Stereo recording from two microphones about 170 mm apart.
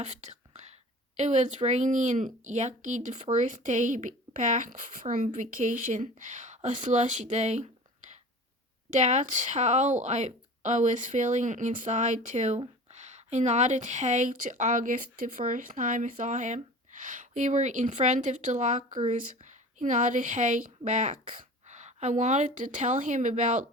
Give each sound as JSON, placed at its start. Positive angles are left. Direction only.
{"t": 0.0, "sound": "speech", "side_deg": -40}
{"t": 8.9, "sound": "speech", "side_deg": -45}